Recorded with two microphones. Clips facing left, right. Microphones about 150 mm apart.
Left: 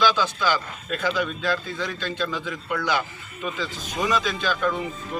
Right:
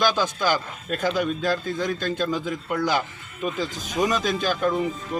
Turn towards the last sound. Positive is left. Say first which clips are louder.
# right 2 dB
turn(degrees=-45)  # may be behind; listen again after turning